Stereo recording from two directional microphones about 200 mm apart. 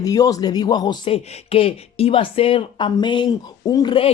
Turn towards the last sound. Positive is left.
turn(degrees=25)  # may be behind; listen again after turning